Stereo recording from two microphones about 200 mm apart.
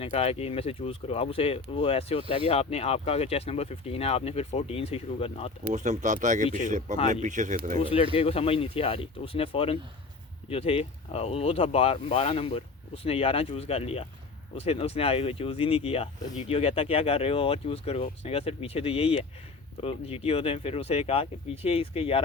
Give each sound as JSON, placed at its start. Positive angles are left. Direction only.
{"t": 0.0, "sound": "speech", "side_deg": 30}
{"t": 5.7, "sound": "speech", "side_deg": -35}
{"t": 7.8, "sound": "speech", "side_deg": 30}